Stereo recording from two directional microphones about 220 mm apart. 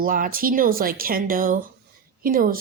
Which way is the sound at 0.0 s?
40° right (ahead or behind).